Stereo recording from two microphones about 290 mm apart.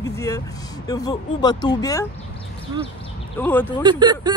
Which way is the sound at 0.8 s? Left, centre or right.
Centre.